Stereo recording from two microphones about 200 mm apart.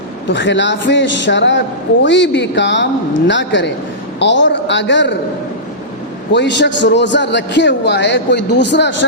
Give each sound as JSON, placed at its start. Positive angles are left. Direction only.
{"t": 0.3, "sound": "a man's voice", "side_deg": 65}
{"t": 6.3, "sound": "a man's voice", "side_deg": 60}